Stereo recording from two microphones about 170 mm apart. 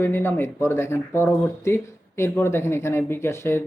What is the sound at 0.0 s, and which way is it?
Speech, 15° left (ahead or behind).